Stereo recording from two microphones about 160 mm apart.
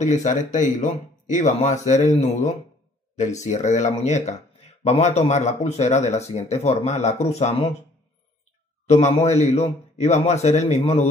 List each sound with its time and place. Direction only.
0.0 s speech: 50° left (ahead or behind)
8.8 s speech: 45° left (ahead or behind)